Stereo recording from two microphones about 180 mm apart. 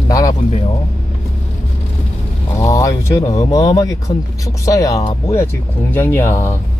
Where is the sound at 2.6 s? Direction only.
15° left (ahead or behind).